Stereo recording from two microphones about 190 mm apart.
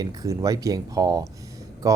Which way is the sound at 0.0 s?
20° right (ahead or behind).